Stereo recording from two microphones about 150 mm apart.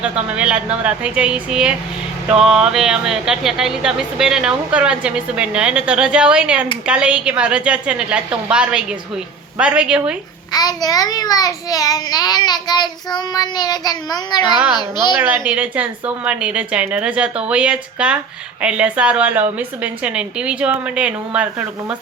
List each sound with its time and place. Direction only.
0.0 s a woman's voice: 10° right (ahead or behind)
10.5 s a child's voice: 25° left (ahead or behind)
15.2 s a woman's voice: 10° right (ahead or behind)